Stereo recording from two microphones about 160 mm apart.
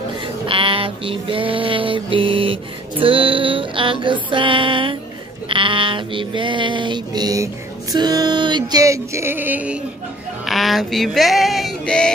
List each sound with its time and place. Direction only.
0.5 s music: 35° right (ahead or behind)
5.5 s a sound: 30° right (ahead or behind)
7.9 s music: 25° right (ahead or behind)
10.4 s female singing: centre (ahead or behind)